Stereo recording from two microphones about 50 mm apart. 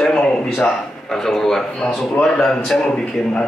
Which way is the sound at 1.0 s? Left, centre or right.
Centre.